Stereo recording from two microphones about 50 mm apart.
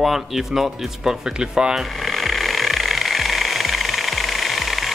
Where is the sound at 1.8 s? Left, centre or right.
Centre.